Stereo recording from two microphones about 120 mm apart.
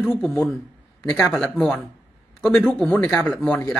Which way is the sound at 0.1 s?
20° left (ahead or behind).